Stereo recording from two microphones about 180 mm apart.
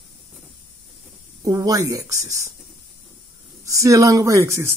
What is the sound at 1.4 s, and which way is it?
Speech, 20° right (ahead or behind).